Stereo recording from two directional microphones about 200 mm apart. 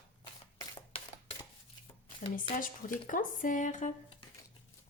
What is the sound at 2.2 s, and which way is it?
A woman's voice, 45° left (ahead or behind).